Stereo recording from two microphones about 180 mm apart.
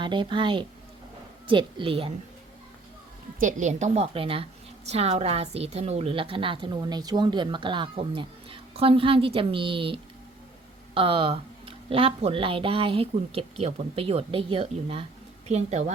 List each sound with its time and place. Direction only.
0.0 s a woman's voice: 25° right (ahead or behind)
3.4 s a woman's voice: 40° right (ahead or behind)